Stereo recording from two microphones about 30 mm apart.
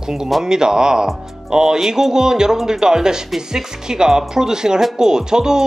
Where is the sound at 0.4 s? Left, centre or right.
Right.